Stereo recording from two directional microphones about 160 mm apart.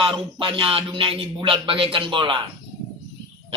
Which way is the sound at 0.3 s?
30° right (ahead or behind).